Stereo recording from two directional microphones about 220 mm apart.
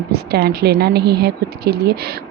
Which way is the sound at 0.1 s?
45° right (ahead or behind).